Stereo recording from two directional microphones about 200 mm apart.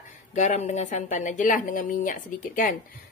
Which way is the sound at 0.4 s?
35° left (ahead or behind).